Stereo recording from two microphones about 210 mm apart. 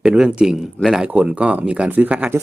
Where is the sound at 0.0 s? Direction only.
5° right (ahead or behind).